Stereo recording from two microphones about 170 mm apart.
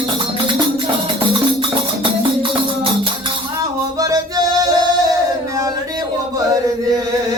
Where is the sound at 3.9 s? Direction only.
20° right (ahead or behind).